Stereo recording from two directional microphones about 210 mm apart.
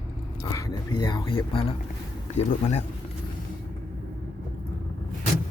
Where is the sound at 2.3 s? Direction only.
30° left (ahead or behind).